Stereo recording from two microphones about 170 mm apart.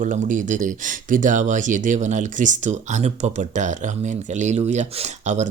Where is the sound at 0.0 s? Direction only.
50° right (ahead or behind).